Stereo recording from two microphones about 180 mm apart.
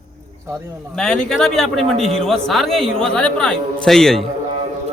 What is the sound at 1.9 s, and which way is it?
Speech, 35° right (ahead or behind).